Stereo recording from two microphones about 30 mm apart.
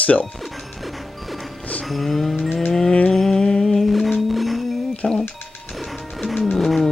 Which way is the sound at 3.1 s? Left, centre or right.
Centre.